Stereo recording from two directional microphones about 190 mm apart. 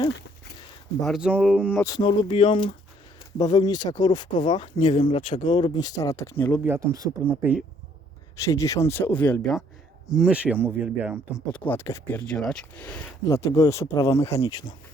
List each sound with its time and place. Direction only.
1.0 s speech: 5° right (ahead or behind)
1.7 s speech: 15° left (ahead or behind)
6.7 s speech: 20° right (ahead or behind)
8.4 s speech: 15° left (ahead or behind)
10.2 s speech: 5° right (ahead or behind)
11.5 s speech: 10° left (ahead or behind)
13.2 s speech: 15° left (ahead or behind)